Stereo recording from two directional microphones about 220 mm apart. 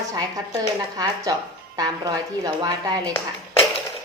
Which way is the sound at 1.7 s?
15° right (ahead or behind).